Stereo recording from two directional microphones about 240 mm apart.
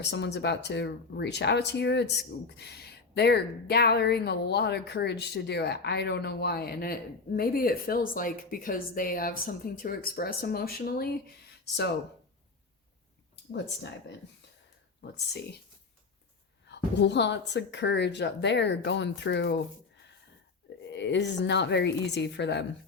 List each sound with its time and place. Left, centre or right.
0.0 s speech: left
16.6 s speech: left
20.9 s speech: left